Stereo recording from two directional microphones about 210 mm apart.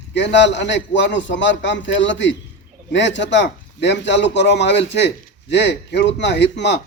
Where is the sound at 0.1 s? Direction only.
55° left (ahead or behind).